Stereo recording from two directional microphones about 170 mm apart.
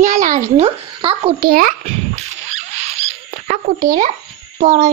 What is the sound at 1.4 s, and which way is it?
Speech, 55° right (ahead or behind).